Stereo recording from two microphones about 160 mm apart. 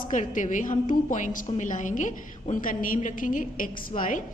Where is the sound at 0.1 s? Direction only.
50° left (ahead or behind).